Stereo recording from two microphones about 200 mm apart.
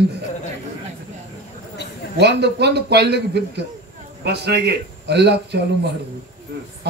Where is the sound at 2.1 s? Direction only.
55° right (ahead or behind).